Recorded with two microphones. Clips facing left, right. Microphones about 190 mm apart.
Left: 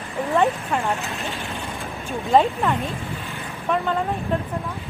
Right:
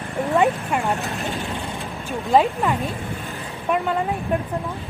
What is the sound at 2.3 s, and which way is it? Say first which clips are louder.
Speech: even; 5° right (ahead or behind).